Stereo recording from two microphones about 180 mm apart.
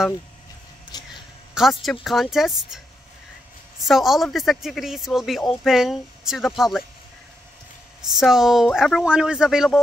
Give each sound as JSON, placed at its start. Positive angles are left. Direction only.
{"t": 0.9, "sound": "a sound", "side_deg": 20}
{"t": 1.5, "sound": "a man's voice", "side_deg": 0}
{"t": 3.8, "sound": "speech", "side_deg": 0}
{"t": 8.1, "sound": "speech", "side_deg": 0}